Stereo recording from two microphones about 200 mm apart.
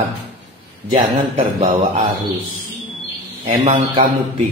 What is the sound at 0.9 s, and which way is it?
Speech, 30° right (ahead or behind).